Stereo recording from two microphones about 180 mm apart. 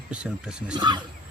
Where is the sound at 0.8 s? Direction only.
25° right (ahead or behind).